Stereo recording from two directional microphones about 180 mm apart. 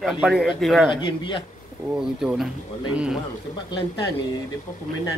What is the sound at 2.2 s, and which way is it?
Speech, 5° right (ahead or behind).